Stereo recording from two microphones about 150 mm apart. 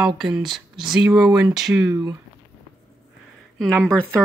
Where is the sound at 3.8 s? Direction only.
5° left (ahead or behind).